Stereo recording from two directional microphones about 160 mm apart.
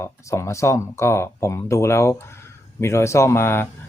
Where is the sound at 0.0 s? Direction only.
20° left (ahead or behind).